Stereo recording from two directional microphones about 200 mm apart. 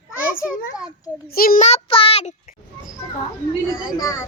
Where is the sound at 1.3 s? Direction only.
45° left (ahead or behind); by 2.3 s 30° left (ahead or behind).